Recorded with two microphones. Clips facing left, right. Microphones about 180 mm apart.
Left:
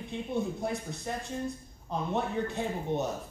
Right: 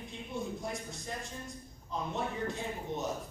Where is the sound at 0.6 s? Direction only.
60° left (ahead or behind).